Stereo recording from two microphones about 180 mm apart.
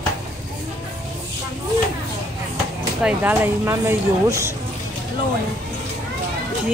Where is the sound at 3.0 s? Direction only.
10° right (ahead or behind).